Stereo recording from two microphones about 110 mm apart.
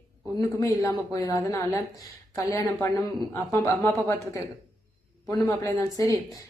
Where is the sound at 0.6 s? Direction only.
30° left (ahead or behind).